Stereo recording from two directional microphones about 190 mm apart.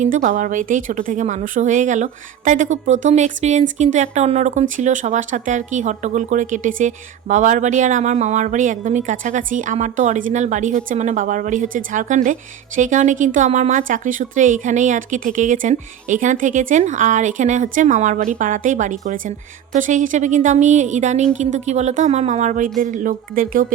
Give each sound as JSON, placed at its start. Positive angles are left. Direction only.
{"t": 0.0, "sound": "speech", "side_deg": -45}